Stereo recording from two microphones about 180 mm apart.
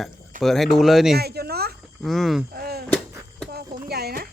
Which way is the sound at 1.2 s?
60° right (ahead or behind).